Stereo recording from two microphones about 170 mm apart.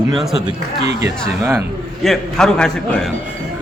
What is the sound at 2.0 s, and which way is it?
A man's voice, 5° left (ahead or behind).